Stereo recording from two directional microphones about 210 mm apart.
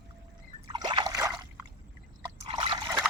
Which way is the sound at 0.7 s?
20° right (ahead or behind).